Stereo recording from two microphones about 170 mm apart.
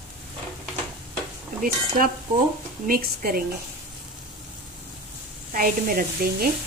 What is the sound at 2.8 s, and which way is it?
Speech, 60° right (ahead or behind).